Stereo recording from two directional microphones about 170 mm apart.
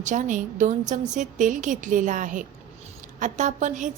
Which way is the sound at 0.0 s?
45° right (ahead or behind).